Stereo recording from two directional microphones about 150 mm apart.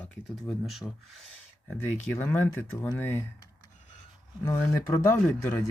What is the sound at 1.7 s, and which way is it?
Speech, 15° left (ahead or behind).